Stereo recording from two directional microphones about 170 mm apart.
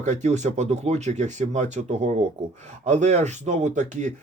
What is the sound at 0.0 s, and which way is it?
Speech, 45° right (ahead or behind).